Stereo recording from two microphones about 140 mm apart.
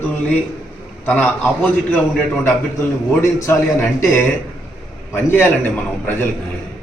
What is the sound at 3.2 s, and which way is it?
Speech, 20° left (ahead or behind).